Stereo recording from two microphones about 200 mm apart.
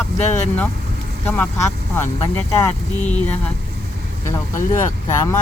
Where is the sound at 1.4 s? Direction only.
10° left (ahead or behind).